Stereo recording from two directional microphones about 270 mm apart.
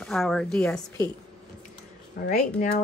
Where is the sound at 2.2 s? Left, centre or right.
Left.